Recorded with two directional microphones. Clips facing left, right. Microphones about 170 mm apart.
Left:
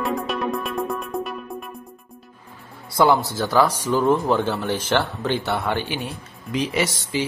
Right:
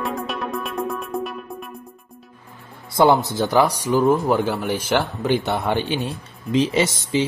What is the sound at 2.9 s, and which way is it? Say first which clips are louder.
Speech: right 2 dB; 20° right (ahead or behind).